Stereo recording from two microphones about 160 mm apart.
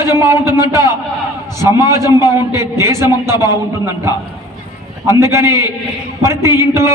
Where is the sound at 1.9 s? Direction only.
15° right (ahead or behind).